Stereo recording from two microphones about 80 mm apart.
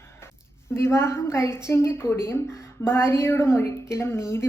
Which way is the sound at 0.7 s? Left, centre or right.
Left.